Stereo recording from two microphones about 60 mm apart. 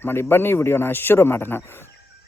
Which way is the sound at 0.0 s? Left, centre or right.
Left.